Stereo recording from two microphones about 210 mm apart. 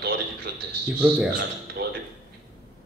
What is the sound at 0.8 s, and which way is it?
Speech, 10° right (ahead or behind).